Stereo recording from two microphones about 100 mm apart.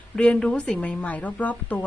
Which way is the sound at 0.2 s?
10° left (ahead or behind).